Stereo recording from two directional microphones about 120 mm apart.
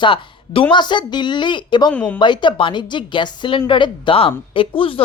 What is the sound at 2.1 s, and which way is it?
Speech, 40° left (ahead or behind).